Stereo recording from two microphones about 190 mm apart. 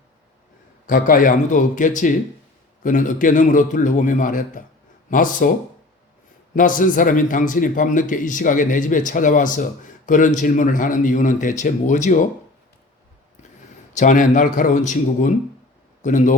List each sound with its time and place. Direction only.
0.9 s a man's voice: 45° left (ahead or behind)
6.5 s a man's voice: 45° left (ahead or behind)
13.9 s speech: 40° left (ahead or behind)